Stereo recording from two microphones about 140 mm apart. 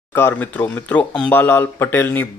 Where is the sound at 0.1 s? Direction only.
15° left (ahead or behind).